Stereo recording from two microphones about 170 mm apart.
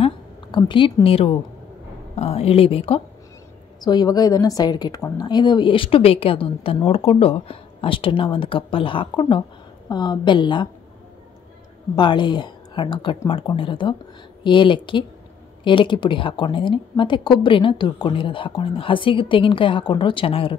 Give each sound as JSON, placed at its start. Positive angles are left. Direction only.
{"t": 0.0, "sound": "a sound", "side_deg": 30}
{"t": 2.1, "sound": "a woman's voice", "side_deg": 35}
{"t": 3.8, "sound": "a woman's voice", "side_deg": 25}
{"t": 11.9, "sound": "a woman's voice", "side_deg": 25}